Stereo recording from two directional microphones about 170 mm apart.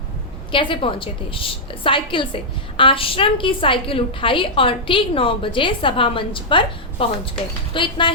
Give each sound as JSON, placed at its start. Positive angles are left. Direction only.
{"t": 0.5, "sound": "a woman's voice", "side_deg": 30}